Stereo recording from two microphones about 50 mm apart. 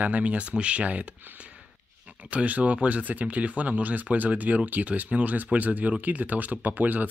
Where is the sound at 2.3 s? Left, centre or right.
Right.